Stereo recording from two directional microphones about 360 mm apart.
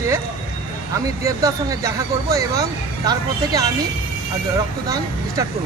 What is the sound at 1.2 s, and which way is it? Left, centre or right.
Speech, centre.